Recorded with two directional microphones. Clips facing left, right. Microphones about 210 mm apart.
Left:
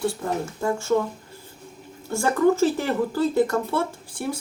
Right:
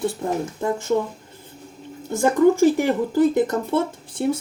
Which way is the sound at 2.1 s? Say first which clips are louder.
Right 3 dB; 15° right (ahead or behind).